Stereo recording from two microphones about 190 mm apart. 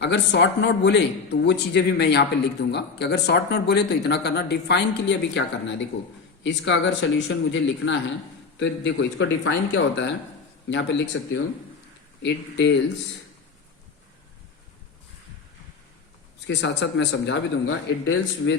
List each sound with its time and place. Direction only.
0.0 s speech: 65° left (ahead or behind)
12.2 s speech: 65° left (ahead or behind)
16.5 s speech: 70° left (ahead or behind)